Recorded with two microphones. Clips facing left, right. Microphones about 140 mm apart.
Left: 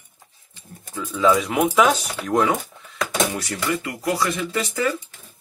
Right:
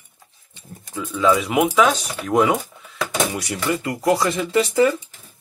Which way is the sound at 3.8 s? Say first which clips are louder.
Right 4 dB; 25° right (ahead or behind).